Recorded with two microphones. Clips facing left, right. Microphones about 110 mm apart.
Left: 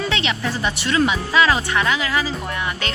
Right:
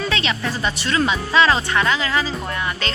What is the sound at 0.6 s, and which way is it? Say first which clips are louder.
Speech: left 2 dB; 15° left (ahead or behind).